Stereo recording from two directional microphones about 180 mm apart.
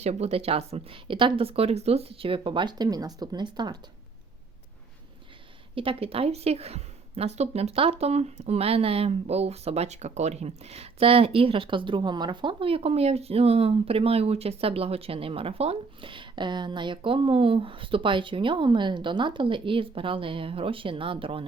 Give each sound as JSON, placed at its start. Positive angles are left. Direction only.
{"t": 0.0, "sound": "a woman's voice", "side_deg": -35}
{"t": 5.7, "sound": "a woman's voice", "side_deg": -30}